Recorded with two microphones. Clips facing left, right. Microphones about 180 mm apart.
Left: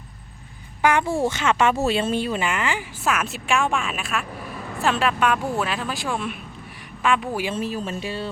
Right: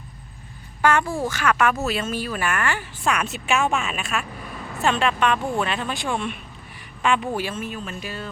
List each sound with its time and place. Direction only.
0.8 s speech: 15° left (ahead or behind)
3.0 s a woman's voice: 5° left (ahead or behind)
7.5 s speech: 35° left (ahead or behind)